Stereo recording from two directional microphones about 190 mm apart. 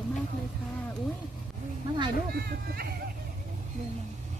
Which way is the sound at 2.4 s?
55° right (ahead or behind).